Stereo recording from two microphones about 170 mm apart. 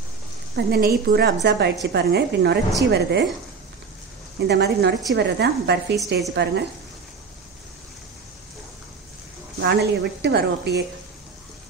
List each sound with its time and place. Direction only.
0.6 s a woman's voice: 65° right (ahead or behind)
4.4 s a woman's voice: 70° right (ahead or behind)
9.6 s a woman's voice: 70° right (ahead or behind)